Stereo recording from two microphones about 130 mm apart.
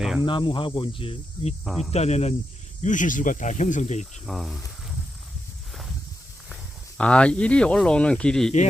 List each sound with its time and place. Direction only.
0.3 s cricket: 40° left (ahead or behind)
1.6 s speech: centre (ahead or behind)
1.9 s speech: 55° left (ahead or behind)
2.8 s speech: 75° left (ahead or behind)
4.1 s speech: centre (ahead or behind)
6.5 s speech: 5° left (ahead or behind)